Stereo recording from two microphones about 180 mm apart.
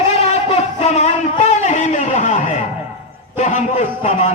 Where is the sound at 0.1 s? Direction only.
35° left (ahead or behind).